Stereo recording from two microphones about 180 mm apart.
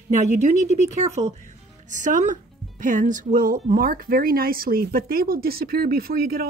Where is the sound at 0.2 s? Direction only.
40° right (ahead or behind).